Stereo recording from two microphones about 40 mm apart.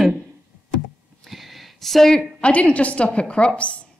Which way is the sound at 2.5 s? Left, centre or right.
Left.